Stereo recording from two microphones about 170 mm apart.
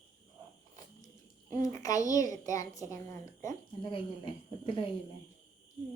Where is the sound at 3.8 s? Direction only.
30° left (ahead or behind).